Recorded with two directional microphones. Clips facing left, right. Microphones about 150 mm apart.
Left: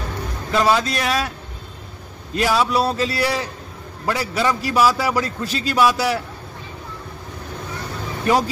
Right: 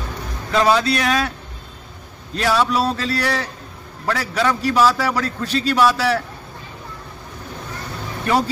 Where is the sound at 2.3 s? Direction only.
10° left (ahead or behind).